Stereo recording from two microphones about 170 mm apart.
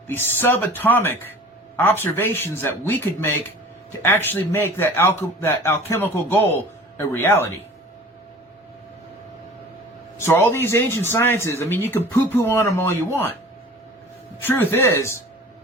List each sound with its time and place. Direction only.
0.1 s speech: 10° left (ahead or behind)
10.2 s speech: 15° left (ahead or behind)
14.4 s speech: 10° left (ahead or behind)